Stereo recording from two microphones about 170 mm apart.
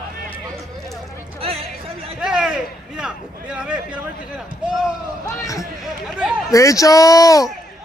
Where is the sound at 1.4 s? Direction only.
35° right (ahead or behind).